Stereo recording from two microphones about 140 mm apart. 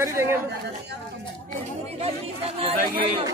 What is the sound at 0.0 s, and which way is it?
Speech, 20° right (ahead or behind).